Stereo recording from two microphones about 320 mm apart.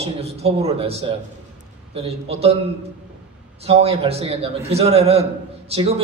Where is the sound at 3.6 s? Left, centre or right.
Centre.